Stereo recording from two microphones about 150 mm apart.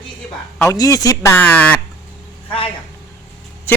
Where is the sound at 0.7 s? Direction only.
25° left (ahead or behind).